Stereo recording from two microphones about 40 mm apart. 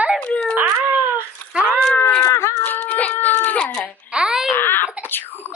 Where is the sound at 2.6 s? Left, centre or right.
Left.